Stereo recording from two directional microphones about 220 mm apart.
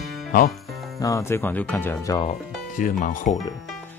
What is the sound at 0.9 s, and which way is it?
Speech, 15° left (ahead or behind).